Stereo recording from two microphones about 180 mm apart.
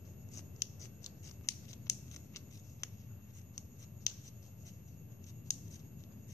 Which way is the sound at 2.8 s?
20° left (ahead or behind).